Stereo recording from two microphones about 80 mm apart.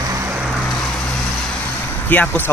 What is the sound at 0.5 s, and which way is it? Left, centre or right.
Vehicle, centre.